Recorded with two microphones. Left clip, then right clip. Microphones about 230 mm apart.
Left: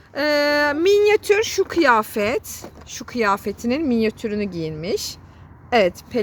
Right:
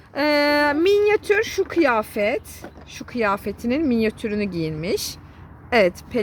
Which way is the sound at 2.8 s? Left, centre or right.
Left.